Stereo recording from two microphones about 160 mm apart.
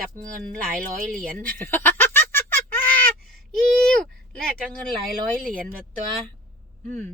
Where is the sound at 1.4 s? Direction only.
10° left (ahead or behind).